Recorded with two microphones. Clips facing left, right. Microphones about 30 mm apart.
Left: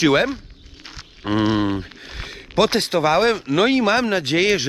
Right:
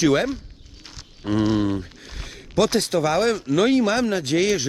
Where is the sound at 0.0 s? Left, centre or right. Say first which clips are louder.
Left 3 dB; left.